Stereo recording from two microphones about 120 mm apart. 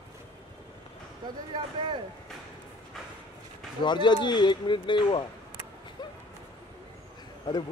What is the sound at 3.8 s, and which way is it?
Speech, 40° left (ahead or behind).